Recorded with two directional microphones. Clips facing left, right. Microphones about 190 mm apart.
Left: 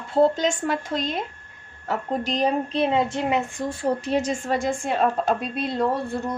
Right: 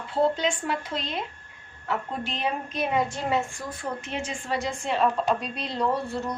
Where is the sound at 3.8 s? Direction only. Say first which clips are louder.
Left 10 dB; 35° left (ahead or behind); by 5.8 s 55° left (ahead or behind).